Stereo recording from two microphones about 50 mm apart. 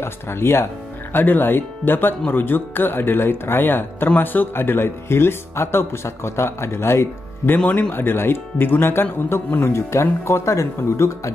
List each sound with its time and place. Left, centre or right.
0.0 s speech: left
1.1 s speech: left
7.5 s speech: left
7.9 s speech: left